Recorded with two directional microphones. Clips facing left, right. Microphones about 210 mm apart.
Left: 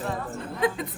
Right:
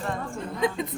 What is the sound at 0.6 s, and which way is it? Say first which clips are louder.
Speech: left 1 dB; 5° left (ahead or behind).